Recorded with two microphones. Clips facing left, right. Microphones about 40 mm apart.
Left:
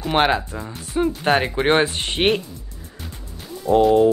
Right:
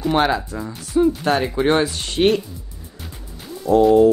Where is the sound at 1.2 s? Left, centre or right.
Left.